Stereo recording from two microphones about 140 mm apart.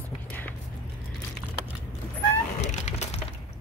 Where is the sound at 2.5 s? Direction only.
55° left (ahead or behind).